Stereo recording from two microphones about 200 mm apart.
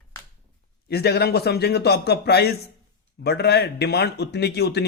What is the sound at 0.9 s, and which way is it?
A man's voice, 50° left (ahead or behind).